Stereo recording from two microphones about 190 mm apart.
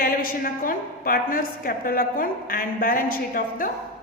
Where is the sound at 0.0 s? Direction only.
50° left (ahead or behind).